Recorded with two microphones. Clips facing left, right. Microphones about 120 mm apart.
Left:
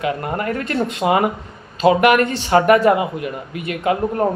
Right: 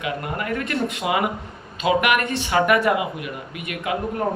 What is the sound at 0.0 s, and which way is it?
Speech, 35° left (ahead or behind).